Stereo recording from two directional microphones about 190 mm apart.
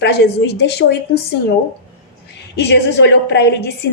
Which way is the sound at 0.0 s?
60° left (ahead or behind).